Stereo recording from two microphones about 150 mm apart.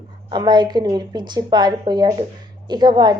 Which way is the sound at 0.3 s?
30° right (ahead or behind).